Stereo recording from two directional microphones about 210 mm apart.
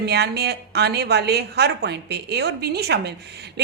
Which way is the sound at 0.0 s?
50° right (ahead or behind).